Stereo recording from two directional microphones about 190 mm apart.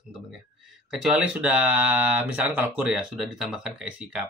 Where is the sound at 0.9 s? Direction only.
Centre (ahead or behind).